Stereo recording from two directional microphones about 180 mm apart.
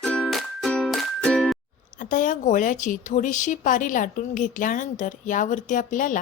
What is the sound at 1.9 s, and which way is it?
A woman's voice, 45° left (ahead or behind).